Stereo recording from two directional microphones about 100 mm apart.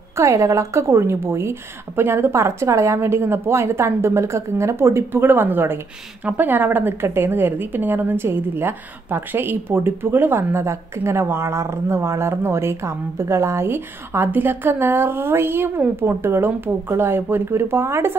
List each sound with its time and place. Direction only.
0.1 s a woman's voice: 30° right (ahead or behind)